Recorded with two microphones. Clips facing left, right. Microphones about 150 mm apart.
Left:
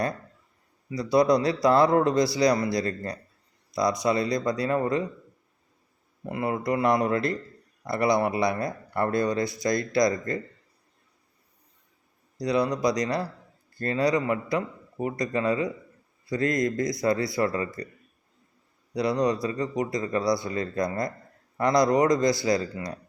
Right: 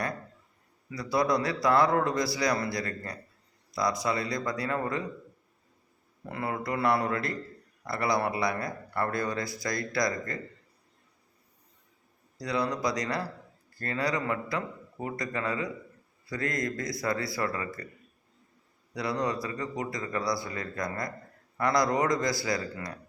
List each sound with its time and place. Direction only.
0.9 s speech: 20° left (ahead or behind)
6.2 s speech: 20° left (ahead or behind)
12.4 s speech: 20° left (ahead or behind)
18.9 s speech: 20° left (ahead or behind)